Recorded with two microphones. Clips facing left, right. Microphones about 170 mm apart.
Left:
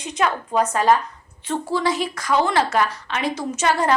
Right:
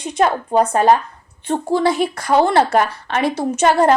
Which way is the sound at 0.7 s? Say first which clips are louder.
Right 4 dB; 55° right (ahead or behind).